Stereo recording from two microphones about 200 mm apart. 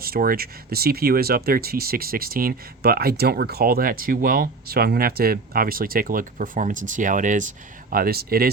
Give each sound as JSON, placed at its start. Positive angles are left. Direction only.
{"t": 0.0, "sound": "speech", "side_deg": -45}